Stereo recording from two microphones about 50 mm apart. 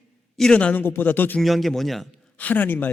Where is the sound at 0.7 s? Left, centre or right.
Left.